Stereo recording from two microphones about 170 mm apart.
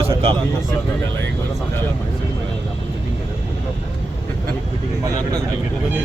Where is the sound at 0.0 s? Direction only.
35° right (ahead or behind).